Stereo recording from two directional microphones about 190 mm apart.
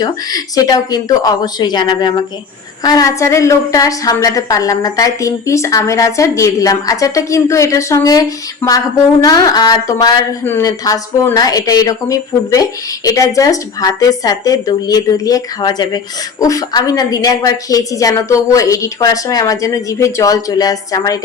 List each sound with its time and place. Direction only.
0.0 s a woman's voice: 20° left (ahead or behind)